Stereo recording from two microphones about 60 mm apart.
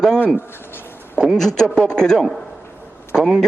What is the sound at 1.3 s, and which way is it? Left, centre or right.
A man's voice, centre.